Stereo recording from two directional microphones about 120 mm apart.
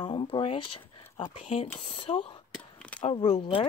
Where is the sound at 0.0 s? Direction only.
40° left (ahead or behind).